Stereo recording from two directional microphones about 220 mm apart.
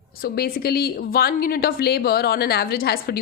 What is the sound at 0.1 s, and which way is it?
A woman's voice, 45° left (ahead or behind).